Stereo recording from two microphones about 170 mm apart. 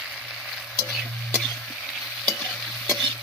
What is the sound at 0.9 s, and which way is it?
Stir, centre (ahead or behind).